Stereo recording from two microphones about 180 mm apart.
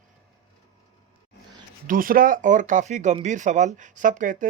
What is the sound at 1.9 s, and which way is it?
Speech, 50° right (ahead or behind).